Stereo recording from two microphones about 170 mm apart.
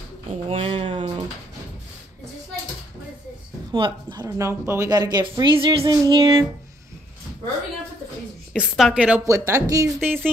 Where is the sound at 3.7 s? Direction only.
25° right (ahead or behind).